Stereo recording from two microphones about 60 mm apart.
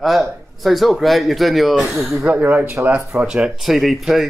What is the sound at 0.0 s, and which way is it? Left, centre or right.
Speech, centre.